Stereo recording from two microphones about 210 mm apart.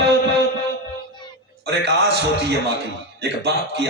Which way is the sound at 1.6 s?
55° right (ahead or behind).